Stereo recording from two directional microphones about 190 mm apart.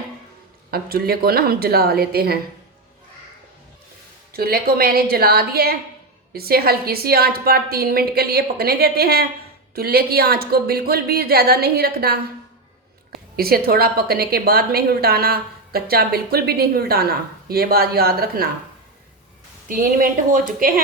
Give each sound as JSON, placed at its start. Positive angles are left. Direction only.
{"t": 0.7, "sound": "a woman's voice", "side_deg": -50}
{"t": 4.3, "sound": "a woman's voice", "side_deg": -50}
{"t": 19.6, "sound": "a woman's voice", "side_deg": -45}